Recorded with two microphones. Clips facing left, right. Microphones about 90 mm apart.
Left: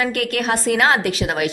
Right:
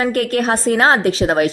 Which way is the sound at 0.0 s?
35° right (ahead or behind).